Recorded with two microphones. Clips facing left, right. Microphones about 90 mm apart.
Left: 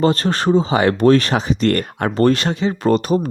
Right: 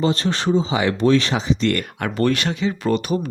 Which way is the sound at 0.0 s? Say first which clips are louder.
Left 4 dB; 45° left (ahead or behind).